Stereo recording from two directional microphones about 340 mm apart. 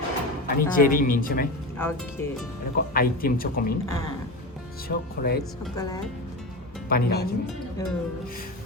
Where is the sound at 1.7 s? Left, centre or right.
Centre.